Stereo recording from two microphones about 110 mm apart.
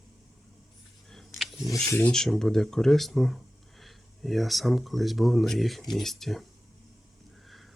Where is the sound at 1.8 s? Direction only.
20° left (ahead or behind).